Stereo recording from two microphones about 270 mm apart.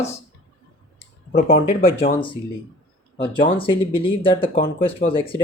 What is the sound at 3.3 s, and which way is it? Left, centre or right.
Speech, centre.